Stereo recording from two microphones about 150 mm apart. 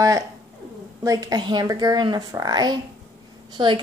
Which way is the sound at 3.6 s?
30° right (ahead or behind).